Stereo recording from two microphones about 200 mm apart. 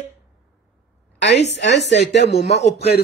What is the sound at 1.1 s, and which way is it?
Speech, 60° left (ahead or behind).